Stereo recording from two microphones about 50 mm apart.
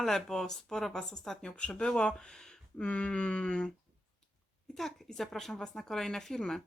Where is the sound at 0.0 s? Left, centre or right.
Centre.